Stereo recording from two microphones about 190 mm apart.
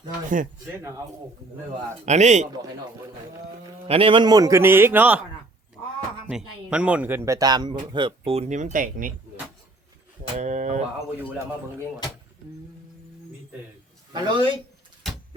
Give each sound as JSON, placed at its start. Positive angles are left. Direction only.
{"t": 0.8, "sound": "a man's voice", "side_deg": -15}
{"t": 2.0, "sound": "speech", "side_deg": -35}
{"t": 3.8, "sound": "a man's voice", "side_deg": -30}
{"t": 6.2, "sound": "speech", "side_deg": -5}
{"t": 10.3, "sound": "speech", "side_deg": -40}
{"t": 14.1, "sound": "speech", "side_deg": -25}